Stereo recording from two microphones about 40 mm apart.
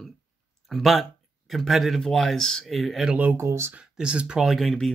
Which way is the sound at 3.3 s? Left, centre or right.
Right.